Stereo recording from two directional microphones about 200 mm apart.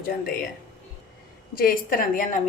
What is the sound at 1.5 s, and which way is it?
Speech, 45° left (ahead or behind).